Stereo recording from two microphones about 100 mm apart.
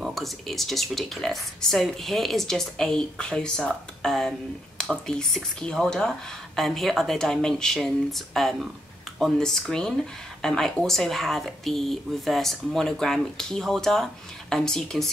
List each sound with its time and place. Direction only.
0.0 s speech: centre (ahead or behind)